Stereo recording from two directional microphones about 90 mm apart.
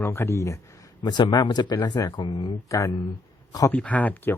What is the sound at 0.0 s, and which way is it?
Speech, 25° left (ahead or behind).